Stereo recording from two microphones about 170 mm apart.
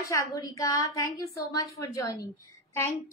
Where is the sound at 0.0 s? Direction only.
20° left (ahead or behind).